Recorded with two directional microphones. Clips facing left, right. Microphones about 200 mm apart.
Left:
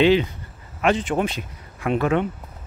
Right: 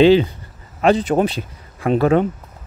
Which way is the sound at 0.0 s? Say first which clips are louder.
Right 5 dB; 35° right (ahead or behind).